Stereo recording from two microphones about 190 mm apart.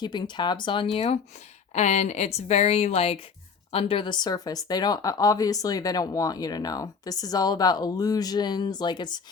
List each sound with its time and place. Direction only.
0.0 s speech: 25° left (ahead or behind)
0.9 s a woman's voice: 35° left (ahead or behind)